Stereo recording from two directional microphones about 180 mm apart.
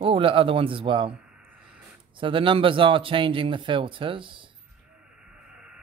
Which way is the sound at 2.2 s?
30° right (ahead or behind).